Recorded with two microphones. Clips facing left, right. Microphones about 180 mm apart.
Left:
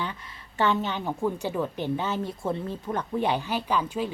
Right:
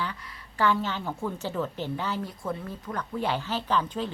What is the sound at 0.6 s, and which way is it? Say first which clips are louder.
A woman's voice: left 1 dB; 20° left (ahead or behind).